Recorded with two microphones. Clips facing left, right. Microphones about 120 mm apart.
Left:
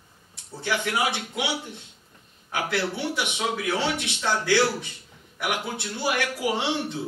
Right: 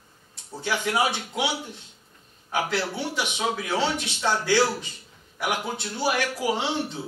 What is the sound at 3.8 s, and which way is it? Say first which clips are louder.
Speech: right 1 dB; 15° left (ahead or behind).